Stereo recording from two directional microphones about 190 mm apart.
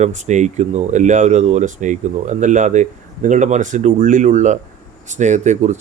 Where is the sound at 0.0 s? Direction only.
40° right (ahead or behind).